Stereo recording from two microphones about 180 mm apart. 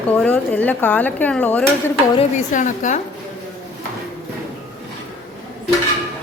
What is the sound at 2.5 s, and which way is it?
Speech, 45° left (ahead or behind).